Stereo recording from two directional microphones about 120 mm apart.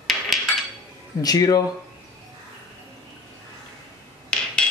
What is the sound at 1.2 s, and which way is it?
Speech, 35° left (ahead or behind).